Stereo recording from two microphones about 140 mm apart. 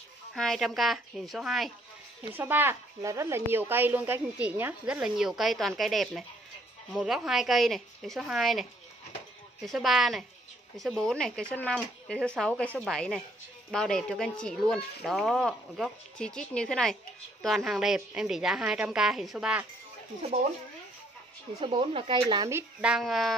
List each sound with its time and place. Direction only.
0.3 s speech: centre (ahead or behind)
2.3 s speech: 15° right (ahead or behind)
21.5 s speech: 40° right (ahead or behind)
22.5 s speech: 10° right (ahead or behind)